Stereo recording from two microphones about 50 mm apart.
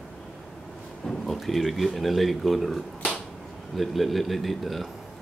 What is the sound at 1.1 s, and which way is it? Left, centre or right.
Speech, centre.